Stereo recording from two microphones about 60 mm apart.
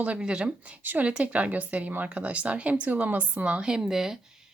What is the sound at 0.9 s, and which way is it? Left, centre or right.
Speech, right.